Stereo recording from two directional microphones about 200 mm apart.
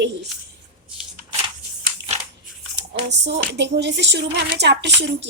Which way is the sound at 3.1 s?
60° right (ahead or behind).